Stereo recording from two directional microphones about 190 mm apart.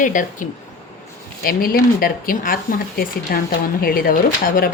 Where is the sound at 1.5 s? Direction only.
50° left (ahead or behind).